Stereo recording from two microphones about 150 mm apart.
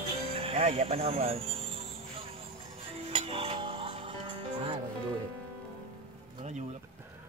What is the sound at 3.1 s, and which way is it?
Music, 40° right (ahead or behind).